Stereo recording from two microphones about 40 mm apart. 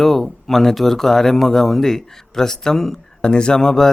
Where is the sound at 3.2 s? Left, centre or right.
Left.